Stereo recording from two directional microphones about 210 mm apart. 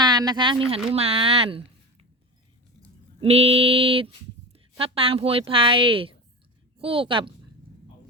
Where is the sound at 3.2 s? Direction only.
30° right (ahead or behind).